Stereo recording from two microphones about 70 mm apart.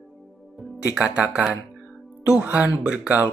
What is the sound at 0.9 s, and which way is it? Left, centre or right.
Speech, centre.